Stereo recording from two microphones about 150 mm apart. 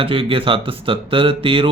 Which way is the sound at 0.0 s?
35° right (ahead or behind).